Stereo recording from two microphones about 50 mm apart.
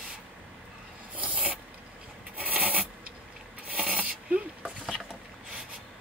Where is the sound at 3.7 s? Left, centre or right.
Right.